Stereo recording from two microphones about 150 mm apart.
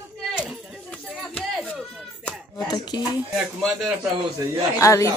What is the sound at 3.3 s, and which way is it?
Speech, centre (ahead or behind).